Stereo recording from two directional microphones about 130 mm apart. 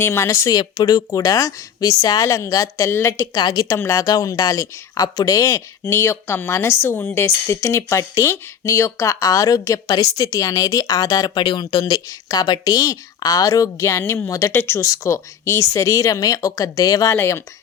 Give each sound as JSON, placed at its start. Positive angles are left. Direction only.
{"t": 0.0, "sound": "a woman's voice", "side_deg": 20}